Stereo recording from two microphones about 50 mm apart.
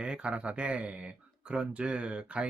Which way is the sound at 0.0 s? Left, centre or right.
Right.